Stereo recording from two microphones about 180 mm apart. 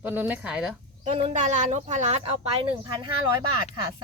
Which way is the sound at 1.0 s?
40° right (ahead or behind).